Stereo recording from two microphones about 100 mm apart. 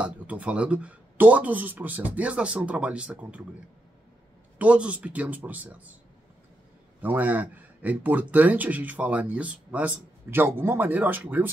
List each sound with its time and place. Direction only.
0.0 s speech: 10° right (ahead or behind)
4.6 s speech: 10° right (ahead or behind)
7.0 s speech: 15° right (ahead or behind)